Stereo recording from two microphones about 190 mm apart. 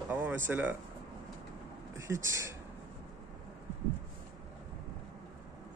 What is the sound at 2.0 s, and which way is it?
Speech, 15° right (ahead or behind).